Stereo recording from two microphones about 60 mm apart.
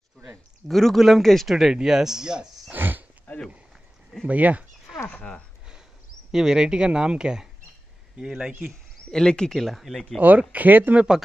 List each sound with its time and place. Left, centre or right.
0.7 s speech: centre
2.7 s a sound: right
3.3 s a sound: left
4.3 s speech: right
5.1 s speech: centre
6.3 s speech: centre
9.1 s speech: centre
9.6 s speech: centre
10.5 s speech: right